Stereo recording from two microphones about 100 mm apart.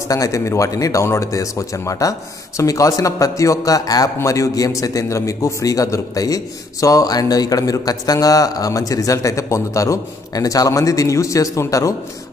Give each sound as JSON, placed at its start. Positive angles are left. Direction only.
{"t": 0.1, "sound": "speech", "side_deg": 35}